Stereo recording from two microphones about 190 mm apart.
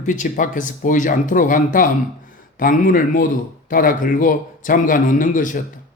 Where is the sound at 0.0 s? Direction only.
45° left (ahead or behind).